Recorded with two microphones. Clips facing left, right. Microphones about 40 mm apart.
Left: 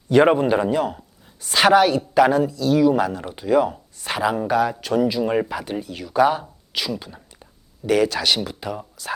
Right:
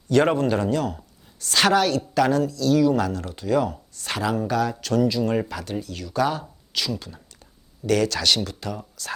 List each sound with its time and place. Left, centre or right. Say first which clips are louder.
0.1 s a man's voice: left 4 dB; centre